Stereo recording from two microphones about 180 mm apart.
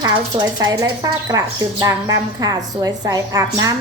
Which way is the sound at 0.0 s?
20° right (ahead or behind).